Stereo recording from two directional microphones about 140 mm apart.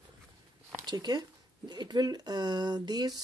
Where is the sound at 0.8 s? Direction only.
30° right (ahead or behind).